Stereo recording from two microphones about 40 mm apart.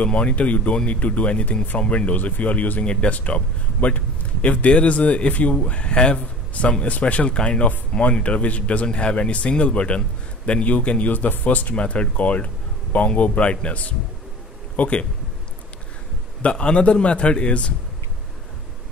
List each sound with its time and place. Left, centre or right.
0.0 s a man's voice: left
2.1 s speech: left
2.9 s a man's voice: left
3.2 s a man's voice: left
11.7 s speech: left
16.4 s a man's voice: left